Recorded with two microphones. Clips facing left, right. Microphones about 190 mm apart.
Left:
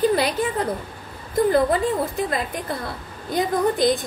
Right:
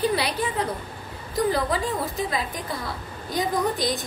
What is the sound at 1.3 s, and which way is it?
A woman's voice, 50° left (ahead or behind).